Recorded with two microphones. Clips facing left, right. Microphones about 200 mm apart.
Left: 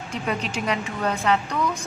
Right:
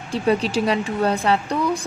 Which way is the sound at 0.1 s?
35° right (ahead or behind).